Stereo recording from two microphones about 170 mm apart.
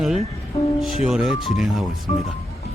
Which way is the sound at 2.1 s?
40° left (ahead or behind).